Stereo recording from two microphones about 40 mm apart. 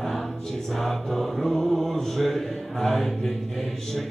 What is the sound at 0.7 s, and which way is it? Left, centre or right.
Choir, centre.